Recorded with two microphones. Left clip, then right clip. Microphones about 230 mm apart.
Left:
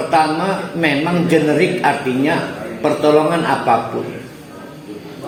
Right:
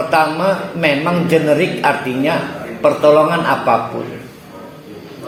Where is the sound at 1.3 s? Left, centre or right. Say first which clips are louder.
Right 1 dB; right.